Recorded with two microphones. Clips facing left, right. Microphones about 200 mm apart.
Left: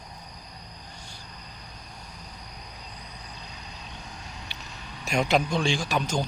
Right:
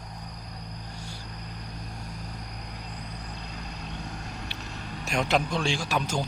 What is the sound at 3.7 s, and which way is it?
Vehicle, 55° right (ahead or behind).